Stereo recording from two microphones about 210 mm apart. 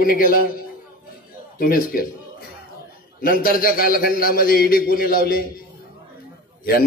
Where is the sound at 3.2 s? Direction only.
40° left (ahead or behind).